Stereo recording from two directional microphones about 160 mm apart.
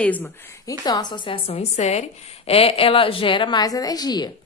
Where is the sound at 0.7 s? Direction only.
25° left (ahead or behind).